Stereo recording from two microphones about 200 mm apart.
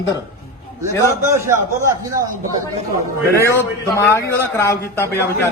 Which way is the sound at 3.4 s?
15° left (ahead or behind).